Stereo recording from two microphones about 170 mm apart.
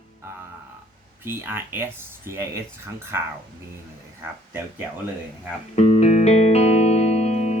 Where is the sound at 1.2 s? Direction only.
15° right (ahead or behind).